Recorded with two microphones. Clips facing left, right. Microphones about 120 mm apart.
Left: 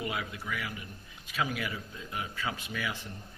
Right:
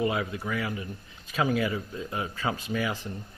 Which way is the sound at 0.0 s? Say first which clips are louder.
Right 8 dB; 30° right (ahead or behind).